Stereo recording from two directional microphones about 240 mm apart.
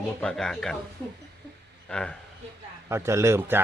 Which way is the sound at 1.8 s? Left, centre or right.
Centre.